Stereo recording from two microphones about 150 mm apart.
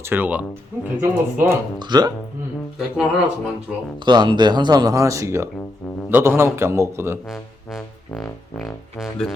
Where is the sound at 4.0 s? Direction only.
30° right (ahead or behind).